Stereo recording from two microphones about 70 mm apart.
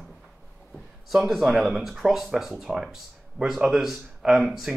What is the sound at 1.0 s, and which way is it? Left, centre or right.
Speech, centre.